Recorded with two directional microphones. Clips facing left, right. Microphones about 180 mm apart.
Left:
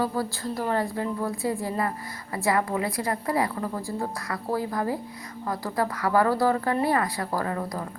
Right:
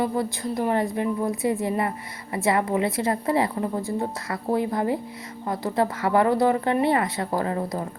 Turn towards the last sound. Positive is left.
turn(degrees=-25)  # may be behind; listen again after turning